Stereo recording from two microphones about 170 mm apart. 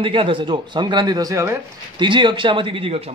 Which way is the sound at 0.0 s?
30° right (ahead or behind).